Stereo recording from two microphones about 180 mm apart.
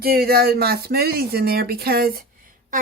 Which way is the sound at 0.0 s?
55° right (ahead or behind).